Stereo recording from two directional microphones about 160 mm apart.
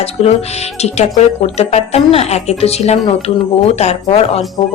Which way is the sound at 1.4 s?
40° left (ahead or behind).